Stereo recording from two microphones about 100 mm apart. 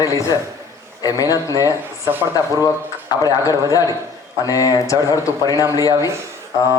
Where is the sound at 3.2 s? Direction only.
35° left (ahead or behind).